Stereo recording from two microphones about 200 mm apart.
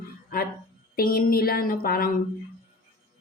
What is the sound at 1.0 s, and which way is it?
A woman's voice, 50° left (ahead or behind).